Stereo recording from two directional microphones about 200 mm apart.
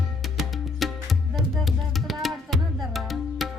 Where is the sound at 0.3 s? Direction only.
Centre (ahead or behind).